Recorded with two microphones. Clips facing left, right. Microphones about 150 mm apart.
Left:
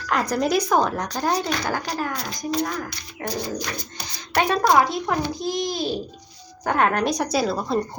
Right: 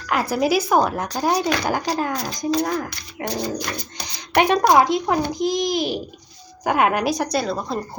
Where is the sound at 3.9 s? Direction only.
20° right (ahead or behind).